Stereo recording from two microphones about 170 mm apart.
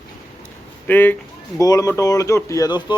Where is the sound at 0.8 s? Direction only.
10° left (ahead or behind).